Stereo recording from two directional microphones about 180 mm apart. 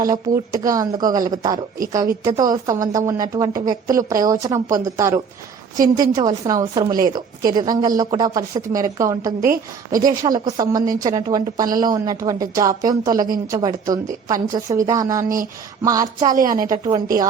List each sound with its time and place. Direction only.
0.0 s a woman's voice: 20° right (ahead or behind)